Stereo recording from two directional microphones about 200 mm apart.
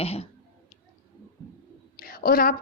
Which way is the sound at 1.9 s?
45° left (ahead or behind).